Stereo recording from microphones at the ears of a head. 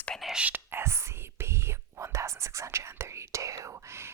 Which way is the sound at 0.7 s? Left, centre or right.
Right.